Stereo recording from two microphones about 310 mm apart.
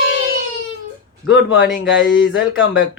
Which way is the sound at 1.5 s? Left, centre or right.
Left.